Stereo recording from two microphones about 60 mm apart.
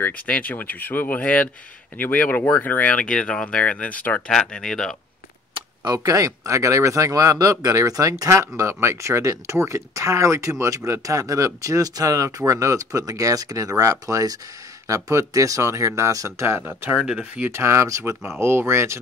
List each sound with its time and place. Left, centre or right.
0.0 s speech: left
4.3 s speech: centre
6.0 s speech: right
8.5 s speech: right
15.0 s speech: right
17.5 s speech: right
18.4 s speech: right